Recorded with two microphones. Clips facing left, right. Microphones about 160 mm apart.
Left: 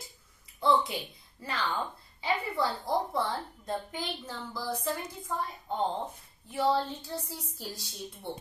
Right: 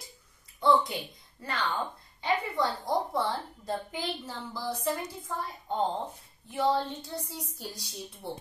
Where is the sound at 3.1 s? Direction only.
Centre (ahead or behind).